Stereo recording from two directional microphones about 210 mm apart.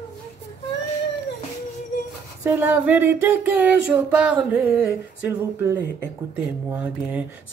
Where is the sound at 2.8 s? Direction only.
10° right (ahead or behind).